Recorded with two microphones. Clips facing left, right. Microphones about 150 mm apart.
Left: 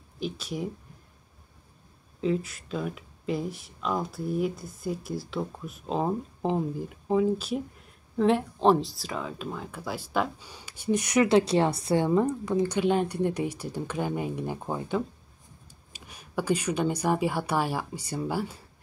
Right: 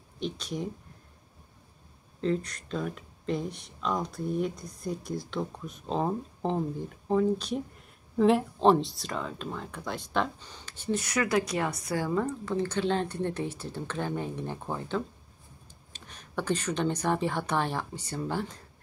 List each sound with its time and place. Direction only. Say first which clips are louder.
0.2 s speech: left 1 dB; 5° left (ahead or behind)
2.2 s speech: left 1 dB; 5° left (ahead or behind)